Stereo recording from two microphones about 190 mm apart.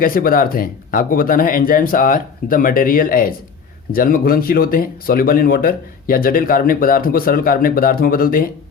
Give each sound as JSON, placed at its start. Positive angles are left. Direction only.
{"t": 0.0, "sound": "speech", "side_deg": 50}